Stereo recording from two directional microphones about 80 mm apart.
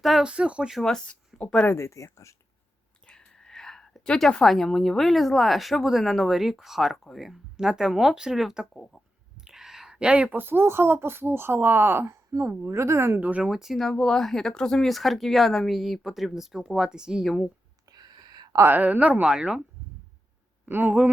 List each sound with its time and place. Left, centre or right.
0.0 s a sound: centre
0.3 s speech: centre
0.8 s speech: centre
1.6 s speech: left
3.1 s speech: centre
9.4 s a sound: centre
10.3 s a woman's voice: right
13.1 s a woman's voice: centre
13.5 s speech: centre
17.2 s speech: centre
17.9 s a sound: right
18.7 s speech: centre
20.7 s a woman's voice: right